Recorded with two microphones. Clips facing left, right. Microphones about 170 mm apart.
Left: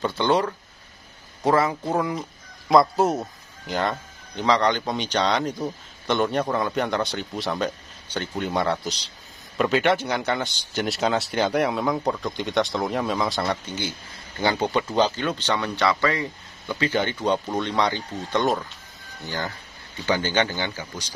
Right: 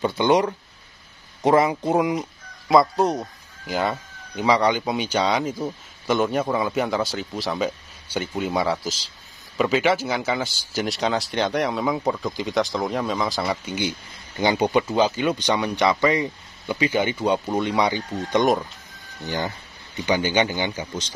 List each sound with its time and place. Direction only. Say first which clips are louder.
0.0 s speech: right 3 dB; 15° right (ahead or behind)
2.7 s speech: even; centre (ahead or behind)
3.6 s speech: right 1 dB; 5° right (ahead or behind)